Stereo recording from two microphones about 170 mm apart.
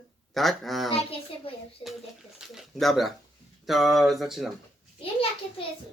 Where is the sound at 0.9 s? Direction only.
35° left (ahead or behind).